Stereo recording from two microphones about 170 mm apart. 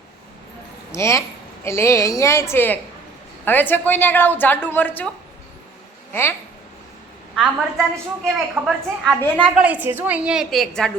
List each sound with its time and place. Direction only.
0.9 s a woman's voice: 15° left (ahead or behind)
7.3 s a woman's voice: centre (ahead or behind)